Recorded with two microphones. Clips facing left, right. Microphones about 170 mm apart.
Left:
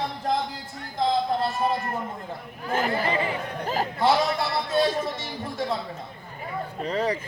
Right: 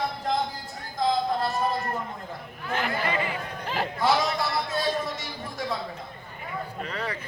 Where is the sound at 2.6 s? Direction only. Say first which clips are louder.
Left 3 dB; 40° left (ahead or behind).